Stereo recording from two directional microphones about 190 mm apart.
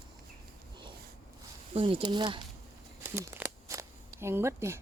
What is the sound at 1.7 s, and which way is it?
Speech, 25° right (ahead or behind).